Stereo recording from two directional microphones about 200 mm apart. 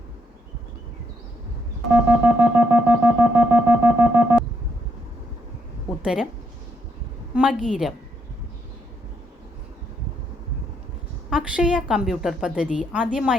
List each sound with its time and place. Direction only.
2.0 s shofar: 10° right (ahead or behind)
6.0 s a woman's voice: 5° right (ahead or behind)
7.3 s a woman's voice: 5° right (ahead or behind)
11.3 s a woman's voice: 5° right (ahead or behind)